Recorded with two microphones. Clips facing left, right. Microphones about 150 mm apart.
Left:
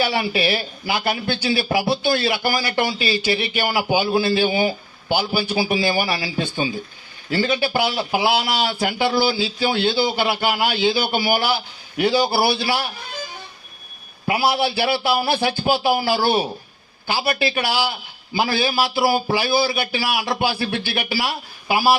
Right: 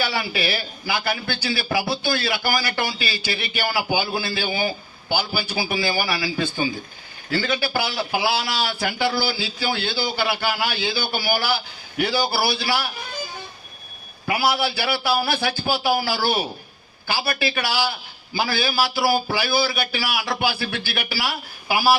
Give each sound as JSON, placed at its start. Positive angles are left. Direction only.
{"t": 0.0, "sound": "a man's voice", "side_deg": 25}
{"t": 14.3, "sound": "a man's voice", "side_deg": 25}